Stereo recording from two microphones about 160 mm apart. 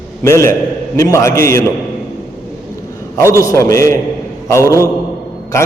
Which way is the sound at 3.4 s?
20° left (ahead or behind).